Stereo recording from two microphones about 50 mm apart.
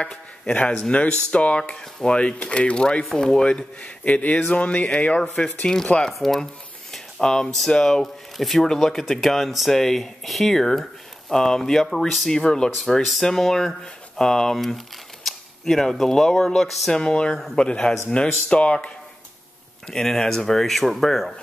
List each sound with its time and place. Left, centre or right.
0.5 s speech: left
4.5 s speech: left
5.3 s speech: centre
16.9 s speech: centre
19.9 s speech: centre